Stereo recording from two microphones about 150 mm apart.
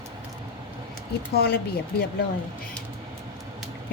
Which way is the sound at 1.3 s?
90° left.